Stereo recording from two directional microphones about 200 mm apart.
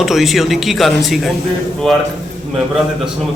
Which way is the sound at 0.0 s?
Centre (ahead or behind).